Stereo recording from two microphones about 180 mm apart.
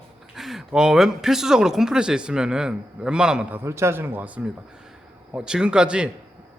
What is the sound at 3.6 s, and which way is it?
A man's voice, 15° right (ahead or behind).